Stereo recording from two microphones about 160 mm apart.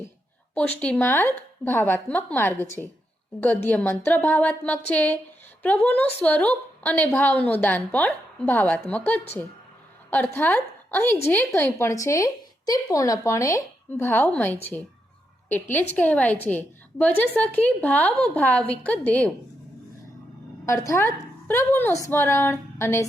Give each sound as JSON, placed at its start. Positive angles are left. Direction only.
{"t": 0.5, "sound": "a woman's voice", "side_deg": 10}
{"t": 20.7, "sound": "a woman's voice", "side_deg": 20}